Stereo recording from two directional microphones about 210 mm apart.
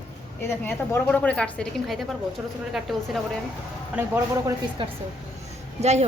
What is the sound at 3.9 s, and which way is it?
Speech, 10° right (ahead or behind).